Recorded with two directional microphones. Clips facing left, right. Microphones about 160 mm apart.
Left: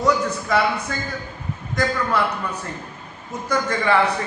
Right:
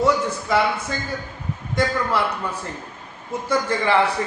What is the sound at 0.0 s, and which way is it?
Speech, 25° right (ahead or behind).